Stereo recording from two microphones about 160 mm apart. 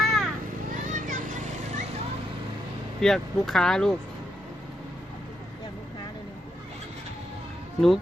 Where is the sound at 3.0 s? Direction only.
Centre (ahead or behind).